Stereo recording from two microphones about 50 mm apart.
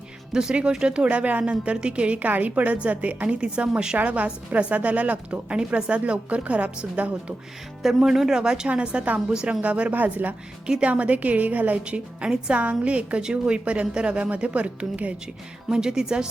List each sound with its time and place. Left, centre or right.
0.5 s speech: centre
3.9 s a woman's voice: right
7.8 s speech: centre
9.6 s a woman's voice: right
10.7 s a woman's voice: right
11.9 s speech: right
15.7 s speech: centre